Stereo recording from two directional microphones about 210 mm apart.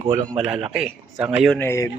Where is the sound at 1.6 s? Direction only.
10° left (ahead or behind).